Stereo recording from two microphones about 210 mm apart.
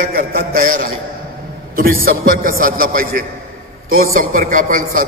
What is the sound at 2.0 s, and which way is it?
A man's voice, 40° right (ahead or behind).